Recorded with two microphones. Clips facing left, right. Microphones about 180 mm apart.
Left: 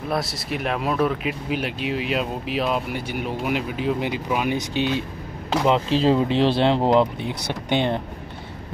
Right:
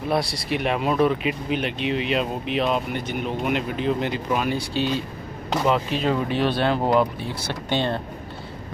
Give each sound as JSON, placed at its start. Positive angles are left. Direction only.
{"t": 0.1, "sound": "speech", "side_deg": 0}
{"t": 5.7, "sound": "speech", "side_deg": 30}